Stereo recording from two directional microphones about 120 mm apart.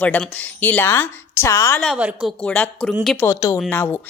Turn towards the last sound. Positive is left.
turn(degrees=15)  # may be behind; listen again after turning